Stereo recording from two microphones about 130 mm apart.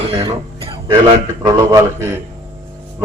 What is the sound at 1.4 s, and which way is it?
Speech, 30° right (ahead or behind).